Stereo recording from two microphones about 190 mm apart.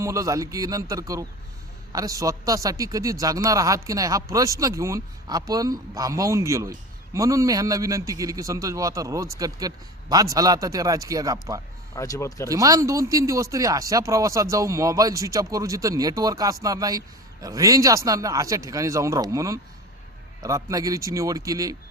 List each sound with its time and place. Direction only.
0.0 s speech: 15° right (ahead or behind)
11.9 s speech: 15° left (ahead or behind)
12.5 s speech: 15° right (ahead or behind)